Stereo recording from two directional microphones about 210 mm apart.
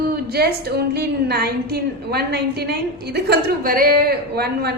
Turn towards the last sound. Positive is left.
turn(degrees=-50)  # may be behind; listen again after turning